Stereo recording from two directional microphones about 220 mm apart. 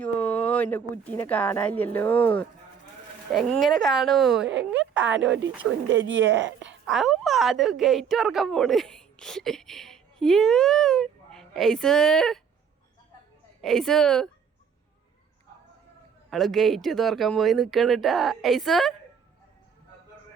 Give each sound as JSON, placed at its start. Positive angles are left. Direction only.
{"t": 0.0, "sound": "speech", "side_deg": 5}
{"t": 5.6, "sound": "speech", "side_deg": -60}
{"t": 6.7, "sound": "a woman's voice", "side_deg": 0}
{"t": 13.6, "sound": "speech", "side_deg": 0}
{"t": 16.3, "sound": "speech", "side_deg": 0}